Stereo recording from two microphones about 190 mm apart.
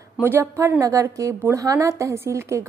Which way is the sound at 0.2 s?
15° right (ahead or behind).